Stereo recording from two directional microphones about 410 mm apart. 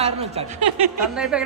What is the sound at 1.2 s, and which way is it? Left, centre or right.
Speech, centre.